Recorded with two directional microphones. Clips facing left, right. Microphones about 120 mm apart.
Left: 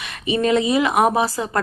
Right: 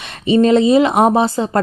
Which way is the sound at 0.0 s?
30° right (ahead or behind).